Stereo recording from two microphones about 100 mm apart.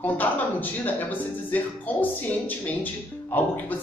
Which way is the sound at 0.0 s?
15° left (ahead or behind).